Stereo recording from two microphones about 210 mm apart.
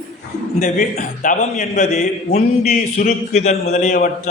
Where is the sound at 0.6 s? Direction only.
35° left (ahead or behind).